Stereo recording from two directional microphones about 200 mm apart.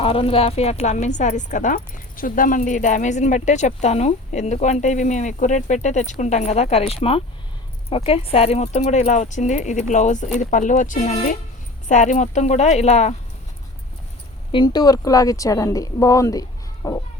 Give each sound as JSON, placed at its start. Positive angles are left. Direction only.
{"t": 0.0, "sound": "speech", "side_deg": 25}
{"t": 14.5, "sound": "a woman's voice", "side_deg": 20}